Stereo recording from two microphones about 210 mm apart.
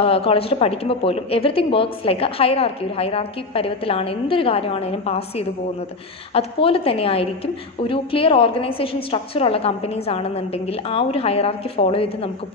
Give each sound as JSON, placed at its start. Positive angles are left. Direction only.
{"t": 0.0, "sound": "a woman's voice", "side_deg": 25}